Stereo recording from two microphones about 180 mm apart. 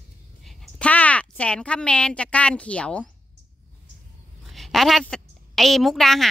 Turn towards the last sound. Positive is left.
turn(degrees=0)  # may be behind; listen again after turning